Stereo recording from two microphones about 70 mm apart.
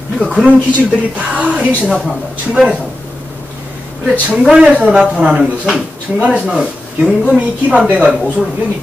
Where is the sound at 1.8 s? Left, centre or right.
Centre.